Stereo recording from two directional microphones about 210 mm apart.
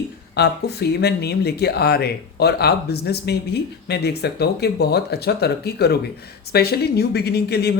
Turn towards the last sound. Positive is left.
turn(degrees=50)  # may be behind; listen again after turning